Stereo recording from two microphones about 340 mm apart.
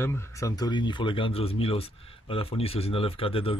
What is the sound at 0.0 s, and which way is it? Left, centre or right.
Speech, centre.